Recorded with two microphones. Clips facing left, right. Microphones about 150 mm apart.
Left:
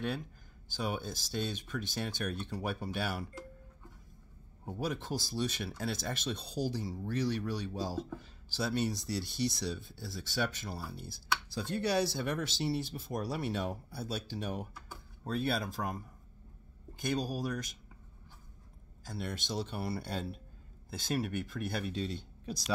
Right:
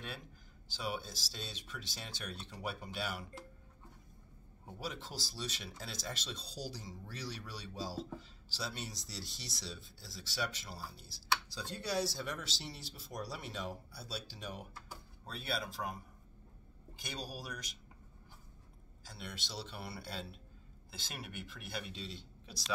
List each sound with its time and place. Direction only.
0.7 s speech: 55° left (ahead or behind)
4.6 s speech: 55° left (ahead or behind)
17.1 s speech: 50° left (ahead or behind)
19.0 s speech: 50° left (ahead or behind)